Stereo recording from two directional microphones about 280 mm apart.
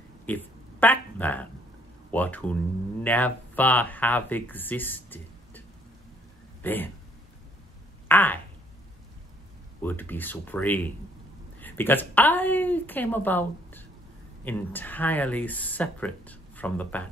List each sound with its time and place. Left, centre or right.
0.3 s a sound: centre
2.0 s speech: centre
6.6 s speech: centre
8.1 s speech: centre
9.8 s a woman's voice: centre